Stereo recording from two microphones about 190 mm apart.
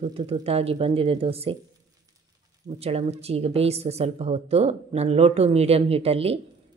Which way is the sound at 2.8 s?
30° right (ahead or behind).